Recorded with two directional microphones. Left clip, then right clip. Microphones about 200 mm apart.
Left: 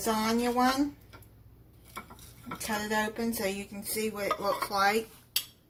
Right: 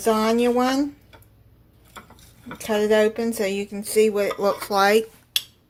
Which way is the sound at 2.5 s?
45° right (ahead or behind).